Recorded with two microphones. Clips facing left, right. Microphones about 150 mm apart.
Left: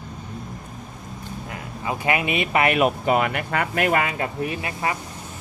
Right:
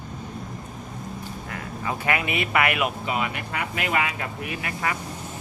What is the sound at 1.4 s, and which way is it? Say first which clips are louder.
Speech: left 2 dB; 20° left (ahead or behind).